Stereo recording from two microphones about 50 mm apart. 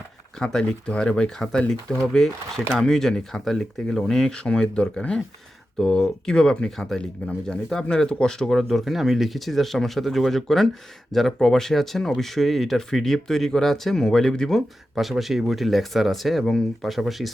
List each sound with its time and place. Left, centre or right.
0.3 s speech: centre
5.7 s speech: centre
8.5 s speech: centre
14.9 s speech: centre